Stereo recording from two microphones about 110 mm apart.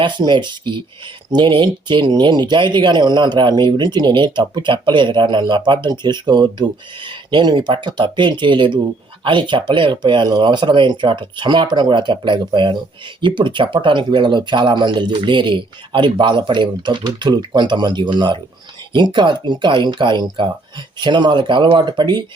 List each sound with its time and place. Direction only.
0.0 s speech: 45° right (ahead or behind)